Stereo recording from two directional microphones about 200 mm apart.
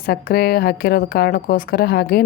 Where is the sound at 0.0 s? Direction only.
50° left (ahead or behind).